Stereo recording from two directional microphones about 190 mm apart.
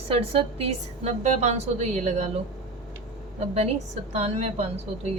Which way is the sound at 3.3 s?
35° right (ahead or behind).